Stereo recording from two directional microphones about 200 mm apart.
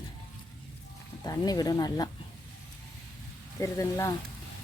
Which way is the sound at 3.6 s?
15° left (ahead or behind).